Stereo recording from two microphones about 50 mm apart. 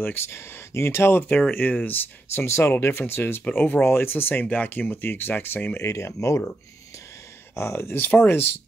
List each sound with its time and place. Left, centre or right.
0.0 s speech: left
1.5 s speech: left
2.3 s speech: left
3.5 s speech: left
5.8 s speech: left
7.5 s speech: left
8.0 s speech: left